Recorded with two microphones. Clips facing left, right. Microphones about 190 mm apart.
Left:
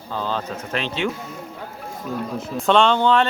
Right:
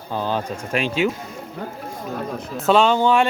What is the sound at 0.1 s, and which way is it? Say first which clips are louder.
A man's voice: right 2 dB; 15° right (ahead or behind).